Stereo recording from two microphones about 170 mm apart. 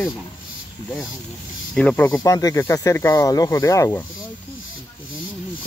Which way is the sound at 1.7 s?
10° left (ahead or behind).